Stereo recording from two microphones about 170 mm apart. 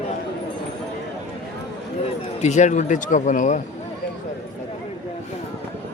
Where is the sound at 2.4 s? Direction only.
45° left (ahead or behind).